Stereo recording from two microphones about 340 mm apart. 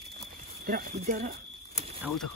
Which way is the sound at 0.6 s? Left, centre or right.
Right.